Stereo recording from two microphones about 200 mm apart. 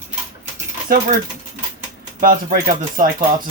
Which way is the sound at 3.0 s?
45° right (ahead or behind).